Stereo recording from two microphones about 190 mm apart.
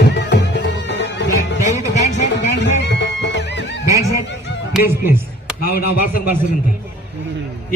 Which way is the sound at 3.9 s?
15° right (ahead or behind).